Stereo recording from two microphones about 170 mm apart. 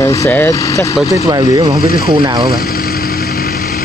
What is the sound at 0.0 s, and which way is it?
Speech, 15° left (ahead or behind).